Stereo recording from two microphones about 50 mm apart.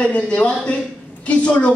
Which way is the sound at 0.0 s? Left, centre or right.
Left.